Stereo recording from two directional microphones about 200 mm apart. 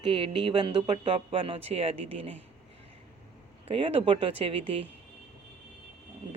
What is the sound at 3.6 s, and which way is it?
Speech, 30° right (ahead or behind).